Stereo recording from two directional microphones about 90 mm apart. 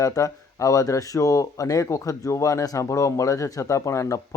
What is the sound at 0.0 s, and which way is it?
Speech, 40° left (ahead or behind).